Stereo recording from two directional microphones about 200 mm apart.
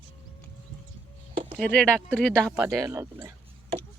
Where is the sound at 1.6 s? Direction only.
5° left (ahead or behind).